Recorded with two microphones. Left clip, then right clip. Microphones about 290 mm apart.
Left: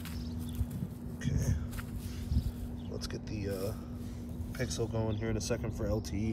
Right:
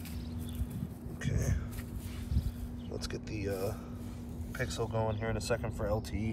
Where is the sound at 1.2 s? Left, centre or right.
Centre.